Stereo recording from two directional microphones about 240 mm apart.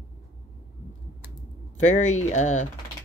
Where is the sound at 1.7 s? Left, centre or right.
Left.